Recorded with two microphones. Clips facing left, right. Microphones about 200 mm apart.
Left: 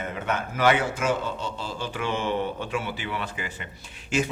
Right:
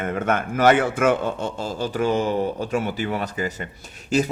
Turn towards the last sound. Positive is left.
turn(degrees=-35)  # may be behind; listen again after turning